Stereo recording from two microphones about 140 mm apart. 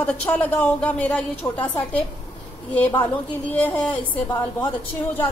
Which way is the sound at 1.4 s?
30° left (ahead or behind).